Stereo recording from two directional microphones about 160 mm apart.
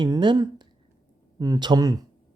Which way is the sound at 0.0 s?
30° right (ahead or behind).